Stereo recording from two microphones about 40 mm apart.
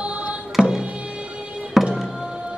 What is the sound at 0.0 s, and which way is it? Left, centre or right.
Music, right.